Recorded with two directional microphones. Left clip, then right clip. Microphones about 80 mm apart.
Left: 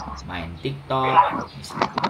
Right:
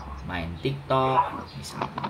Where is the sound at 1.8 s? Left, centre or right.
Left.